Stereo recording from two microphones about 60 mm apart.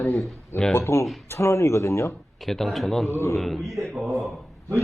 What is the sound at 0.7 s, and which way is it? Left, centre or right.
Speech, left.